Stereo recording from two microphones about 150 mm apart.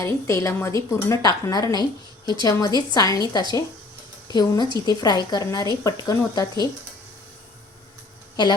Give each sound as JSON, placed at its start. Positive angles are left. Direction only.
{"t": 0.0, "sound": "speech", "side_deg": 15}